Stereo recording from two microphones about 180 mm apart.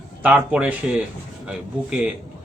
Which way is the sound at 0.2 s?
10° right (ahead or behind).